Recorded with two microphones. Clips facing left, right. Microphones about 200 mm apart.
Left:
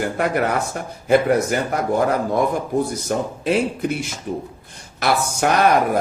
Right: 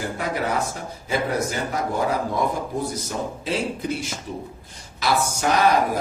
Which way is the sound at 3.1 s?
60° left (ahead or behind).